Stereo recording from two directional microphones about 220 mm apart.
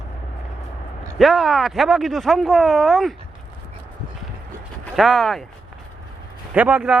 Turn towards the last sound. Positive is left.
turn(degrees=-5)  # may be behind; listen again after turning